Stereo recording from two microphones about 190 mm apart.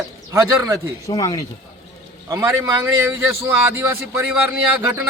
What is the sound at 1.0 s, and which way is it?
Speech, 20° left (ahead or behind).